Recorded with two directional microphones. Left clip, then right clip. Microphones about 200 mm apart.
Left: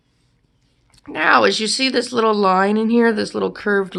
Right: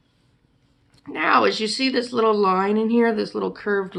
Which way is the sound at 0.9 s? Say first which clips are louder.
Left 4 dB; 45° left (ahead or behind).